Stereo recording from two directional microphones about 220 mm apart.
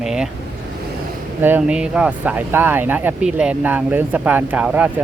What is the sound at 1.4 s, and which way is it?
Speech, 5° right (ahead or behind).